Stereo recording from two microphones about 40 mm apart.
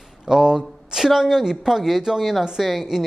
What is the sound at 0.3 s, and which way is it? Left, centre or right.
A man's voice, centre.